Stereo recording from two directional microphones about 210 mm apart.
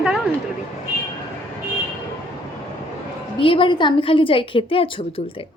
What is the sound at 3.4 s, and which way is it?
A woman's voice, 25° left (ahead or behind).